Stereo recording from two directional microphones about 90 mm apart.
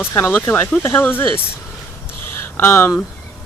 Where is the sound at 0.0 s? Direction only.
25° left (ahead or behind).